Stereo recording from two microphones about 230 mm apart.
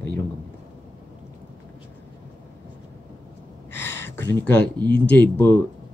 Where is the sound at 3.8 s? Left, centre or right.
Centre.